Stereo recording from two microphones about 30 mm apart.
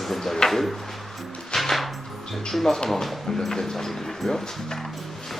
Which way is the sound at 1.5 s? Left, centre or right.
Centre.